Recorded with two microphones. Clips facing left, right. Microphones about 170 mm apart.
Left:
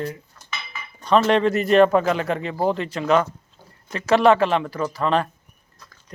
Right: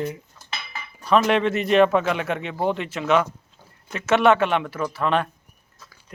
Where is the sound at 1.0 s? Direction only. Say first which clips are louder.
Left 2 dB; 5° right (ahead or behind).